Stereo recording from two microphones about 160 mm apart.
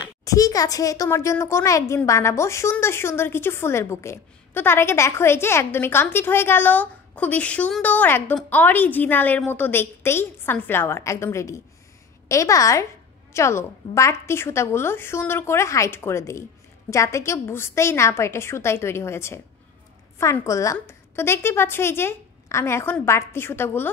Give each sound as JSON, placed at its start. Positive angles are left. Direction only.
{"t": 0.2, "sound": "a woman's voice", "side_deg": 20}